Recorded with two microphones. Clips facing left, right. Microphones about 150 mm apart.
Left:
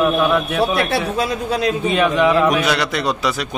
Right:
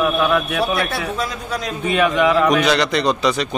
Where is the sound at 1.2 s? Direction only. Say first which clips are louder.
Left 5 dB; 65° left (ahead or behind).